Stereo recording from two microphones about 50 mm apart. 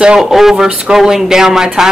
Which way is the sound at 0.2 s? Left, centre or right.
Centre.